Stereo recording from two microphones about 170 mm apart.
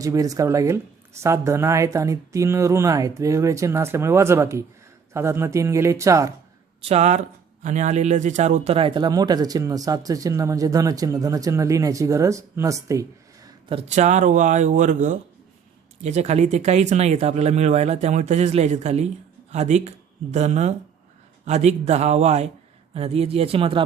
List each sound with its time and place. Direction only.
0.0 s speech: 20° right (ahead or behind)
6.8 s speech: 40° right (ahead or behind); by 13.5 s 20° right (ahead or behind)
13.7 s speech: 35° right (ahead or behind)